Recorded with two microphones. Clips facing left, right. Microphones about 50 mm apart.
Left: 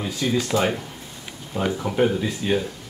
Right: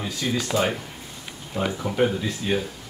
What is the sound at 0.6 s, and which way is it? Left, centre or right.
Speech, centre.